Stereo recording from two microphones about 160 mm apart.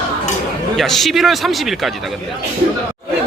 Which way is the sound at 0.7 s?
Centre (ahead or behind).